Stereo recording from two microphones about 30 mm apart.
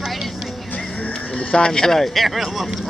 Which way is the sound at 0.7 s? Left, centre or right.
Left.